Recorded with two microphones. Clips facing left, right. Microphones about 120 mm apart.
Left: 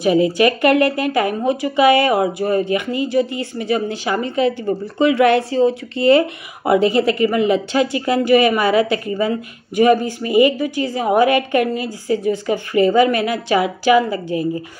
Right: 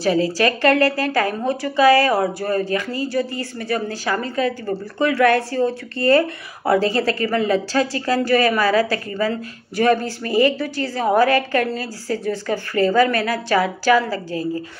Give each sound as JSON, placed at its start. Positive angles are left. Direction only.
{"t": 0.0, "sound": "speech", "side_deg": 15}